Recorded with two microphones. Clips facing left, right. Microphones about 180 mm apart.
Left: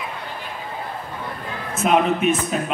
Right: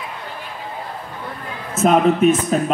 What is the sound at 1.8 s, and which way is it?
Speech, 40° right (ahead or behind).